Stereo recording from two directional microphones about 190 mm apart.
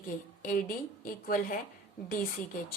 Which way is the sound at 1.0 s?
45° left (ahead or behind).